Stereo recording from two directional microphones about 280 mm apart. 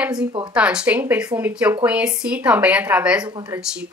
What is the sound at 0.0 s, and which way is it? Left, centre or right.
A woman's voice, centre.